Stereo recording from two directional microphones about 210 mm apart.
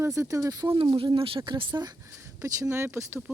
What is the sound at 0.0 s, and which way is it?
Speech, 15° right (ahead or behind).